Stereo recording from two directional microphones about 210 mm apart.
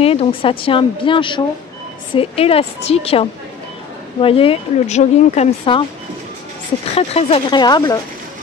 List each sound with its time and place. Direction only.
0.0 s speech: 30° left (ahead or behind)
7.0 s speech: 30° left (ahead or behind)